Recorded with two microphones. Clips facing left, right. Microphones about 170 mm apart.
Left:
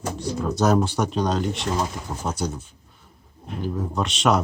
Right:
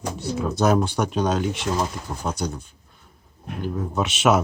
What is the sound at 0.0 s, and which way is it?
Speech, 5° right (ahead or behind).